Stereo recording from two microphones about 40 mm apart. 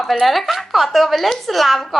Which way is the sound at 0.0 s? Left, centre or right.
Centre.